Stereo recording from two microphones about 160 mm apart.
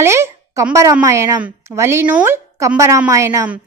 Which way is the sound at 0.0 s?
15° right (ahead or behind).